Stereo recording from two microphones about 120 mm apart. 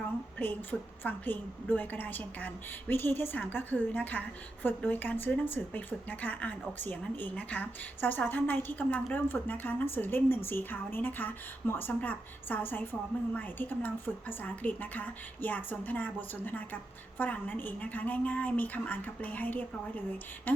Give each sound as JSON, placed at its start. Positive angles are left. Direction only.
{"t": 0.3, "sound": "a woman's voice", "side_deg": 15}